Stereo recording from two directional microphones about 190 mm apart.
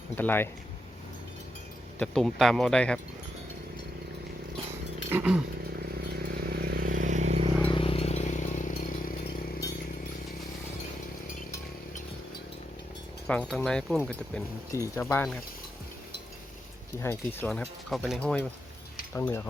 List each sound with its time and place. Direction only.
0.2 s speech: 10° left (ahead or behind)
2.0 s speech: centre (ahead or behind)
5.1 s speech: 10° right (ahead or behind)
6.2 s vehicle: 55° right (ahead or behind); by 7.5 s 35° right (ahead or behind)
7.6 s a sound: 25° left (ahead or behind); by 9.4 s 45° left (ahead or behind)
13.5 s speech: 5° left (ahead or behind)
17.0 s speech: 10° left (ahead or behind)